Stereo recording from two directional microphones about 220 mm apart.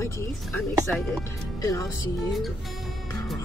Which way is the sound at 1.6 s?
15° left (ahead or behind).